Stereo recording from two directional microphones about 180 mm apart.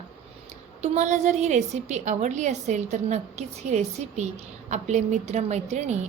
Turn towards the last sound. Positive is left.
turn(degrees=-40)  # may be behind; listen again after turning